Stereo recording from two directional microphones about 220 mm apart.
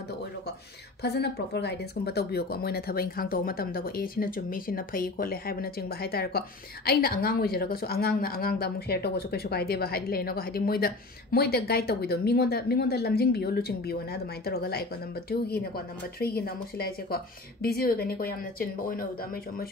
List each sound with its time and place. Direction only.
1.0 s a woman's voice: 50° left (ahead or behind)